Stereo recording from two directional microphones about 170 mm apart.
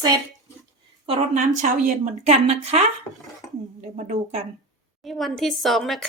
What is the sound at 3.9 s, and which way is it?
Speech, 40° right (ahead or behind).